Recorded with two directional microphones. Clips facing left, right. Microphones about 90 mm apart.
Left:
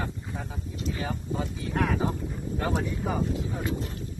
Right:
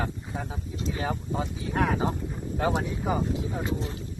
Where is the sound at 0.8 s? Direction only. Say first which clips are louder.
Right 2 dB; 30° right (ahead or behind).